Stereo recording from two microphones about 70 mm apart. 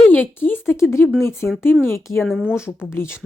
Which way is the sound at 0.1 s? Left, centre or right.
Left.